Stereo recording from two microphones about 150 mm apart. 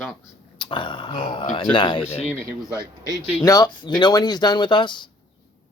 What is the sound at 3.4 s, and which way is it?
Speech, 25° left (ahead or behind).